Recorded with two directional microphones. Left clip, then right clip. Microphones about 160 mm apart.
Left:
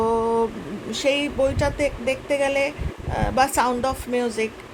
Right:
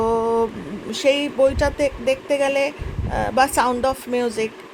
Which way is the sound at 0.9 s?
20° right (ahead or behind).